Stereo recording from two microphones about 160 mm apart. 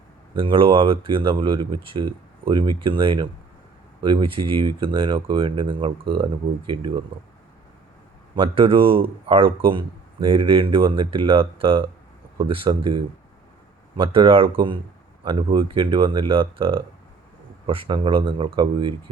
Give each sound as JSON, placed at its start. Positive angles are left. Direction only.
{"t": 0.3, "sound": "speech", "side_deg": -35}
{"t": 8.4, "sound": "speech", "side_deg": -35}
{"t": 13.9, "sound": "speech", "side_deg": -30}